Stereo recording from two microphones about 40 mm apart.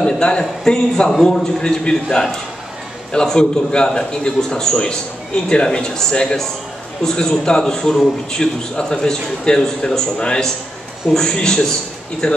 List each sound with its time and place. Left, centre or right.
0.0 s a man's voice: left
3.3 s a man's voice: left